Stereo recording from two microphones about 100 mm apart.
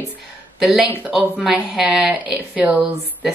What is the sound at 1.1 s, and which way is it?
Speech, 5° right (ahead or behind).